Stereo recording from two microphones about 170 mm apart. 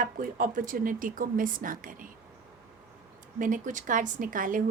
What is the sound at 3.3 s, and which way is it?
A woman's voice, 50° right (ahead or behind).